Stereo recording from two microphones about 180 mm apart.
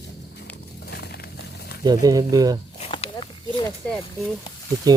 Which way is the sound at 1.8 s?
20° right (ahead or behind).